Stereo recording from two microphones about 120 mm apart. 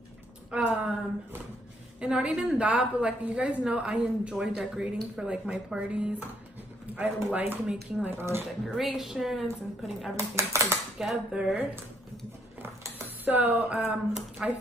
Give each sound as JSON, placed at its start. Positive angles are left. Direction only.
{"t": 0.5, "sound": "a woman's voice", "side_deg": -5}
{"t": 2.0, "sound": "a woman's voice", "side_deg": -5}
{"t": 7.3, "sound": "a woman's voice", "side_deg": -10}
{"t": 8.6, "sound": "a woman's voice", "side_deg": -5}
{"t": 10.1, "sound": "speech", "side_deg": -25}
{"t": 11.0, "sound": "a woman's voice", "side_deg": 0}
{"t": 13.2, "sound": "a woman's voice", "side_deg": -15}